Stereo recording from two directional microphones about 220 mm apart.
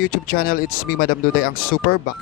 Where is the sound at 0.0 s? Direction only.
40° left (ahead or behind).